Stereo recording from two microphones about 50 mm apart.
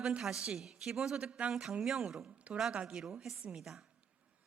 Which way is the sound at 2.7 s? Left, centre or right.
Centre.